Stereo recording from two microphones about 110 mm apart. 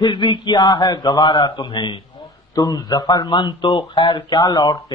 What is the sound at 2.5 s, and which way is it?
Speech, 35° left (ahead or behind).